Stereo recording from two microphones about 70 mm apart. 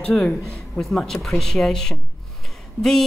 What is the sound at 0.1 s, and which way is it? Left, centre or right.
A woman's voice, centre.